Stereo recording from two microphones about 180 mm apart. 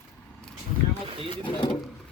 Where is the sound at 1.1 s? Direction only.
30° right (ahead or behind).